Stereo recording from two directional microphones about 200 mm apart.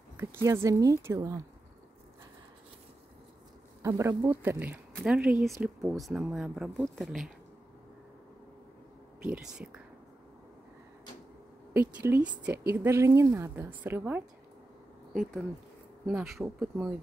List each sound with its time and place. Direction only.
0.2 s speech: 15° right (ahead or behind)
3.8 s speech: 15° right (ahead or behind)
9.2 s speech: 5° right (ahead or behind)
11.7 s speech: 10° right (ahead or behind)
16.1 s speech: 5° right (ahead or behind)